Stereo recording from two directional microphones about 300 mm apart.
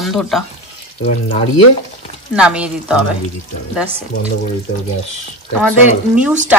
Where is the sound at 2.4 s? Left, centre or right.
Centre.